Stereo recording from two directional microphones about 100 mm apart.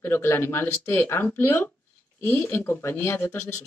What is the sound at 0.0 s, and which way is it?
Speech, 20° left (ahead or behind).